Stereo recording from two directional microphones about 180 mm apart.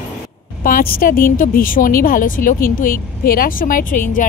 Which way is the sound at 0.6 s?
55° left (ahead or behind).